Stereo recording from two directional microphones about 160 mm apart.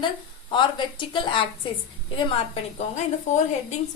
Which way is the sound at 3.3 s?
45° left (ahead or behind).